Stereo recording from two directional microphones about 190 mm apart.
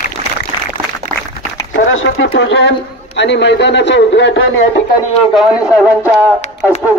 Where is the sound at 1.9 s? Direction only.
90° left.